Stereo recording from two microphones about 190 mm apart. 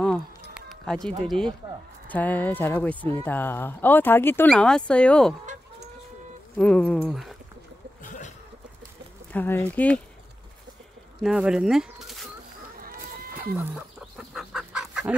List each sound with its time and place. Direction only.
0.0 s run: centre (ahead or behind)
1.2 s speech: centre (ahead or behind)
6.6 s speech: 5° left (ahead or behind)
9.3 s speech: 10° left (ahead or behind)
11.2 s speech: 5° right (ahead or behind)
12.8 s a sound: 50° right (ahead or behind)
13.6 s chicken: 5° right (ahead or behind)